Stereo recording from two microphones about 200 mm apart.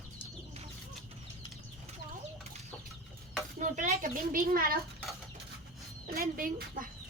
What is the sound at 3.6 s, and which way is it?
A child's voice, 40° right (ahead or behind).